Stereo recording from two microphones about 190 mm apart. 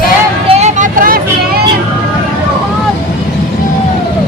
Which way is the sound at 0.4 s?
35° right (ahead or behind).